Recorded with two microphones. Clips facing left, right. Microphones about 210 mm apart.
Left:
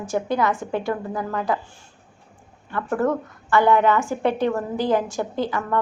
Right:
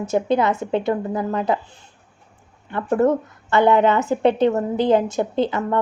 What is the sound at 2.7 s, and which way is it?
A woman's voice, 25° right (ahead or behind).